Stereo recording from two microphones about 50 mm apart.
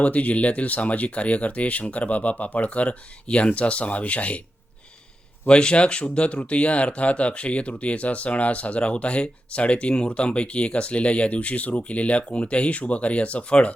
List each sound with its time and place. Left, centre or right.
0.0 s speech: left
5.5 s speech: centre